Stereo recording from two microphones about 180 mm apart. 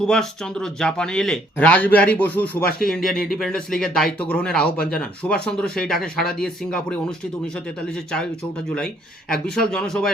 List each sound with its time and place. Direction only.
0.0 s speech: 5° left (ahead or behind)
2.6 s speech: 55° left (ahead or behind)
2.9 s speech: centre (ahead or behind)
9.3 s speech: 5° left (ahead or behind)